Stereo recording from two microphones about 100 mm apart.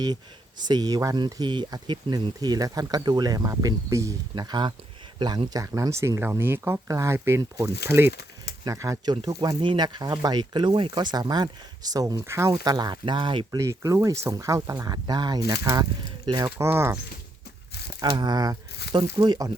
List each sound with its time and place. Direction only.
0.6 s speech: 45° right (ahead or behind)
4.4 s speech: 45° right (ahead or behind)
5.5 s speech: 35° right (ahead or behind)
6.8 s speech: 35° right (ahead or behind)
9.0 s speech: 45° right (ahead or behind); by 12.5 s 30° right (ahead or behind)
12.5 s speech: 45° right (ahead or behind)
13.6 s speech: 30° right (ahead or behind); by 16.5 s 45° right (ahead or behind)
16.6 s speech: 25° right (ahead or behind)
18.0 s speech: 45° right (ahead or behind)
18.9 s speech: 55° right (ahead or behind)